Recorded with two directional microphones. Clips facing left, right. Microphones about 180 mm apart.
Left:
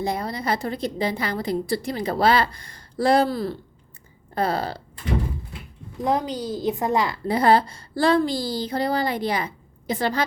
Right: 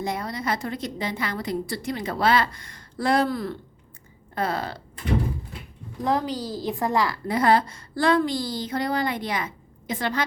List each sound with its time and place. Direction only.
0.0 s a woman's voice: 35° left (ahead or behind)
6.0 s a woman's voice: 20° left (ahead or behind)